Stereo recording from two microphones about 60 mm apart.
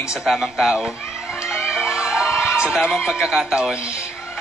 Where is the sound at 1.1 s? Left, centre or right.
Centre.